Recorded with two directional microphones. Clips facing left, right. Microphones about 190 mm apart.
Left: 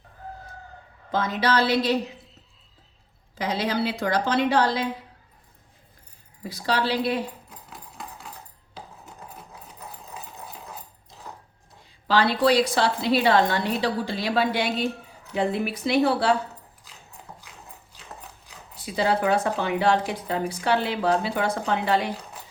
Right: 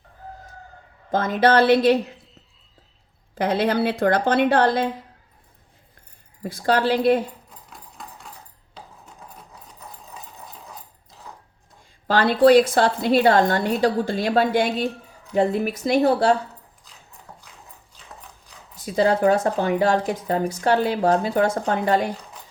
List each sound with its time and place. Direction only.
1.1 s a woman's voice: 50° right (ahead or behind)
3.3 s a woman's voice: 55° right (ahead or behind)
6.4 s a woman's voice: 50° right (ahead or behind)
7.7 s hammer: 5° left (ahead or behind)
9.0 s rub: 5° left (ahead or behind)
11.3 s a sound: centre (ahead or behind)
12.0 s a woman's voice: 50° right (ahead or behind)
18.9 s a woman's voice: 45° right (ahead or behind)